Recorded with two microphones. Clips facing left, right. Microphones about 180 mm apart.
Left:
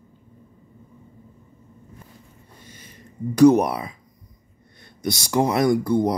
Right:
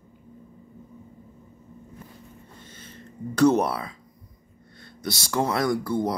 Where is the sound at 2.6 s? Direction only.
10° left (ahead or behind).